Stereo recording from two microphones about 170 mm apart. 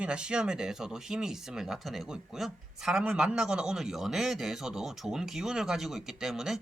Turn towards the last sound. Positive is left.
turn(degrees=0)  # may be behind; listen again after turning